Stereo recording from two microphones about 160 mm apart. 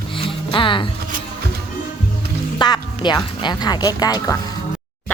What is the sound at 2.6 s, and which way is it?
Speech, 25° left (ahead or behind).